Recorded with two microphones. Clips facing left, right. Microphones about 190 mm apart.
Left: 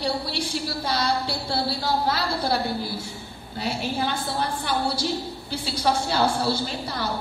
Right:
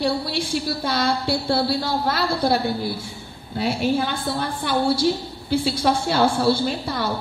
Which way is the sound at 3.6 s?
55° right (ahead or behind).